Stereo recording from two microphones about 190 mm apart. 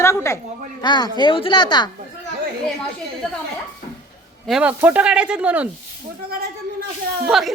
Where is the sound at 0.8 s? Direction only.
20° left (ahead or behind).